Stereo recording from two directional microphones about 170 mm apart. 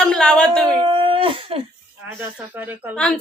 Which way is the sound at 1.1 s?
30° right (ahead or behind).